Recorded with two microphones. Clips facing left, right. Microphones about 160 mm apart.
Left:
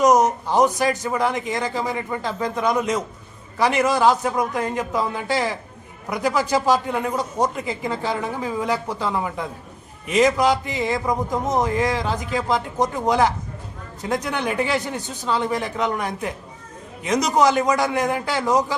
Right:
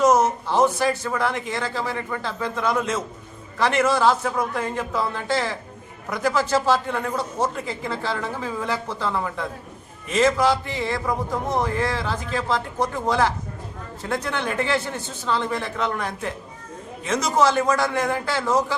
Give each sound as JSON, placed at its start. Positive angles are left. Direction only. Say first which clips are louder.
{"t": 0.0, "sound": "a man's voice", "louder": "left 2 dB", "side_deg": 15}